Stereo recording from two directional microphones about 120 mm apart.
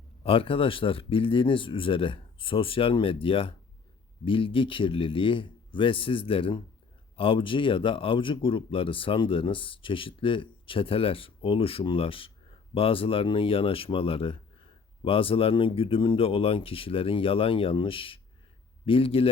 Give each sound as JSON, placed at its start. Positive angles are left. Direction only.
{"t": 0.2, "sound": "speech", "side_deg": 50}